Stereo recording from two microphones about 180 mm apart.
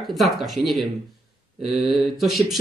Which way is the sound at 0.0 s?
Centre (ahead or behind).